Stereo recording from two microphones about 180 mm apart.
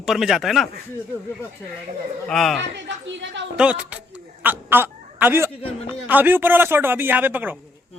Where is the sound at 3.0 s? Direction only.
80° right.